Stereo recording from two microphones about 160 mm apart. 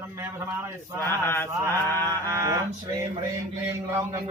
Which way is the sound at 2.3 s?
20° right (ahead or behind).